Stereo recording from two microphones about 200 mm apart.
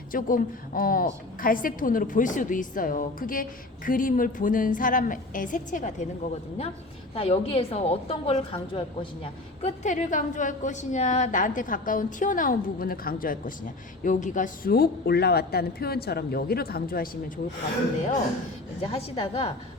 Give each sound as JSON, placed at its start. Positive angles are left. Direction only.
{"t": 0.1, "sound": "a woman's voice", "side_deg": 45}
{"t": 7.1, "sound": "a woman's voice", "side_deg": 30}
{"t": 18.8, "sound": "a woman's voice", "side_deg": 30}